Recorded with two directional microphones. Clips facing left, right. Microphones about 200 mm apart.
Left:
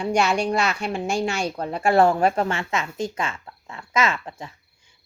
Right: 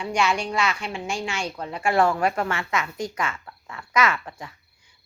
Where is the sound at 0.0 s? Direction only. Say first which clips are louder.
Left 3 dB; 40° left (ahead or behind).